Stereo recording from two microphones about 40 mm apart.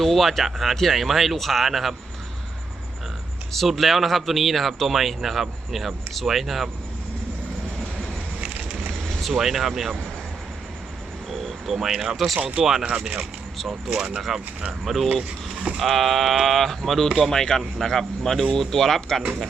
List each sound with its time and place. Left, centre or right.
0.0 s speech: centre
3.5 s speech: centre
8.4 s a sound: right
9.0 s vehicle: centre
9.3 s speech: centre
11.3 s speech: centre
15.4 s a sound: centre
15.8 s speech: centre